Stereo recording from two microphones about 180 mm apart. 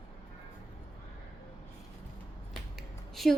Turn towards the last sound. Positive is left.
turn(degrees=0)  # may be behind; listen again after turning